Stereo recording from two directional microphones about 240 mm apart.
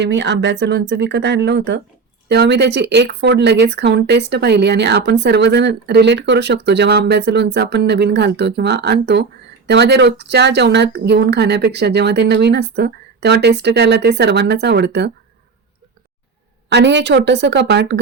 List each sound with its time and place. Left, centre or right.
0.0 s speech: right
16.6 s speech: right